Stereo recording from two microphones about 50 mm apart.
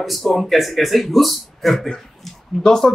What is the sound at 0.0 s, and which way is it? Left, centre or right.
Speech, centre.